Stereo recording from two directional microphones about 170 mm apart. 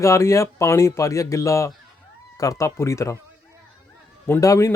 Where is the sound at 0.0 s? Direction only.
15° left (ahead or behind).